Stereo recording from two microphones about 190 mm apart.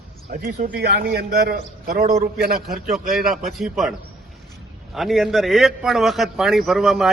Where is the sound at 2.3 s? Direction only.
50° right (ahead or behind).